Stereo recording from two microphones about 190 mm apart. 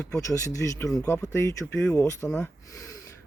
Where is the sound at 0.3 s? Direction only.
15° left (ahead or behind).